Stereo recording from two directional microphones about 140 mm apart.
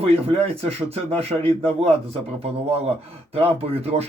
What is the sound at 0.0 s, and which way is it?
Speech, 50° right (ahead or behind).